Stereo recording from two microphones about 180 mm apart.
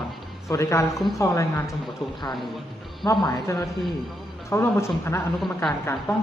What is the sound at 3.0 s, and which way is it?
Speech, 25° left (ahead or behind).